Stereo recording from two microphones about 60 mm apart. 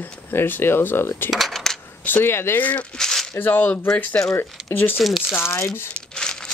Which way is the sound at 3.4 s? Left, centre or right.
Left.